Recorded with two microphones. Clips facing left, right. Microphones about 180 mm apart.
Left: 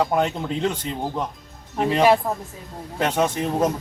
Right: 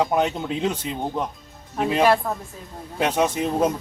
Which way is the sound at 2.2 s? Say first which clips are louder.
Left 1 dB; 15° left (ahead or behind).